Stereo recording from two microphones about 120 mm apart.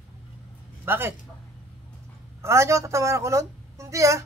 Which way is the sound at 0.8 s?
20° right (ahead or behind).